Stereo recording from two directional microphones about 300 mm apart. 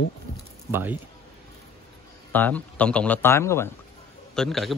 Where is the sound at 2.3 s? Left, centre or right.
Centre.